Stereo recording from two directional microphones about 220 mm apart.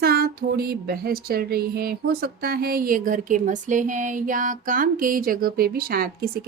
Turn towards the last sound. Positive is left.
turn(degrees=-45)  # may be behind; listen again after turning